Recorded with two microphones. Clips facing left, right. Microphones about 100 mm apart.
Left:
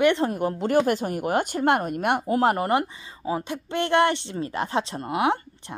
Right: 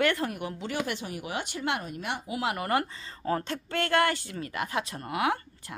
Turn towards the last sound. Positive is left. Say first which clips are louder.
# left 5 dB
turn(degrees=25)  # may be behind; listen again after turning